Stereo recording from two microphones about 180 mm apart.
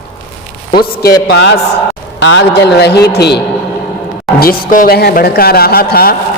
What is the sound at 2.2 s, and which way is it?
A man's voice, 90° left.